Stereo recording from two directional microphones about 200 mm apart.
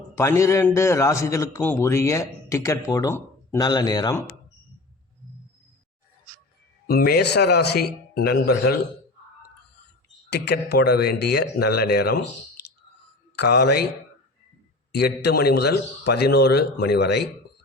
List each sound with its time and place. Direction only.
0.2 s a man's voice: 15° left (ahead or behind)
6.8 s a man's voice: 50° left (ahead or behind)
10.2 s a man's voice: 55° left (ahead or behind)
13.3 s a man's voice: 55° left (ahead or behind)
14.9 s a man's voice: 55° left (ahead or behind)